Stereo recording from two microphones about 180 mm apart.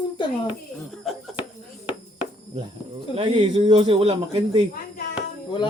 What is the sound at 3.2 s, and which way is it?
Speech, 25° right (ahead or behind).